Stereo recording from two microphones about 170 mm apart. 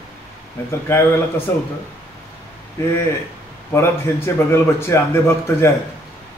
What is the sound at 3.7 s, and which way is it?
A man's voice, 15° left (ahead or behind).